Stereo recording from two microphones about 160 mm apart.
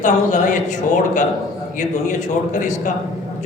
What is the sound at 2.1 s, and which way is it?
Speech, 50° left (ahead or behind).